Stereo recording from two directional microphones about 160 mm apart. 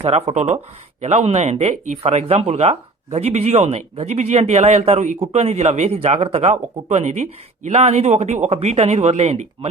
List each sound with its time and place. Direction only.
0.0 s speech: 40° right (ahead or behind)